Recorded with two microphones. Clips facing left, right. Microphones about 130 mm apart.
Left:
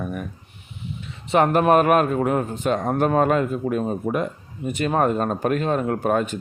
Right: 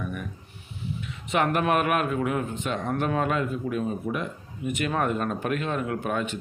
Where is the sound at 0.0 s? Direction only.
40° left (ahead or behind).